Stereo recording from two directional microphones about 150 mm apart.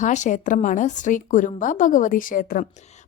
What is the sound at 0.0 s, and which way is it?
Speech, 55° left (ahead or behind).